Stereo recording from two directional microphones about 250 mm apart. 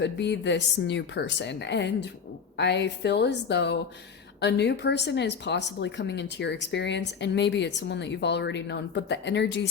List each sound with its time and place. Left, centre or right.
0.0 s speech: left